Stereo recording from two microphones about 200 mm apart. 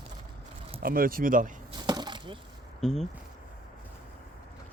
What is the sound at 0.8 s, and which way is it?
Speech, 45° right (ahead or behind).